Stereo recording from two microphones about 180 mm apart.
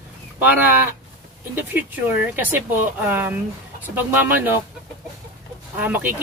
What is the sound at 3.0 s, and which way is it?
Speech, 10° right (ahead or behind).